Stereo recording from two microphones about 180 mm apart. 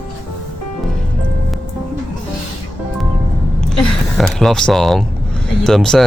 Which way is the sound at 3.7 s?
5° left (ahead or behind).